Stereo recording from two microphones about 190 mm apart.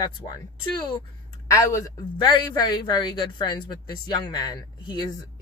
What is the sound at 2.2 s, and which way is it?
Speech, 25° left (ahead or behind).